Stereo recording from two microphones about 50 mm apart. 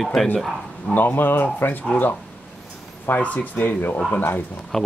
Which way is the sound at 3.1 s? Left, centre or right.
Left.